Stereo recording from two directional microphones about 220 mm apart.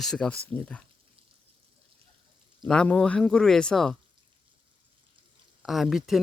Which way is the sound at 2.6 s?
5° left (ahead or behind).